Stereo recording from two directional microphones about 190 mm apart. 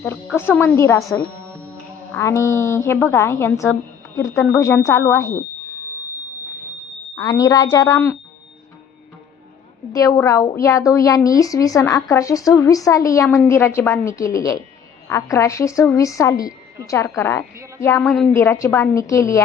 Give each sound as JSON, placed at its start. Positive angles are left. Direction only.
{"t": 0.3, "sound": "a woman's voice", "side_deg": 10}
{"t": 2.1, "sound": "a woman's voice", "side_deg": 15}
{"t": 7.2, "sound": "a woman's voice", "side_deg": 20}
{"t": 9.9, "sound": "a woman's voice", "side_deg": 20}
{"t": 18.1, "sound": "a woman's voice", "side_deg": 0}
{"t": 18.3, "sound": "a woman's voice", "side_deg": 15}